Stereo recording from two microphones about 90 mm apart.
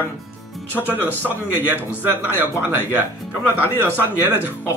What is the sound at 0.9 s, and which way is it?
Speech, 20° left (ahead or behind).